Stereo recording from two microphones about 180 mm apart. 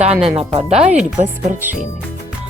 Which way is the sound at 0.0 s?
35° right (ahead or behind).